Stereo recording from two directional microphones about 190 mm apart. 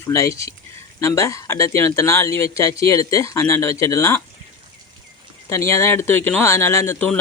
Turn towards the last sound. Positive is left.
turn(degrees=10)  # may be behind; listen again after turning